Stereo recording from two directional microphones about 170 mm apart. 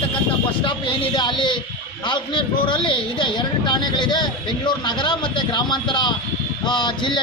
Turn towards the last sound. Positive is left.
turn(degrees=25)  # may be behind; listen again after turning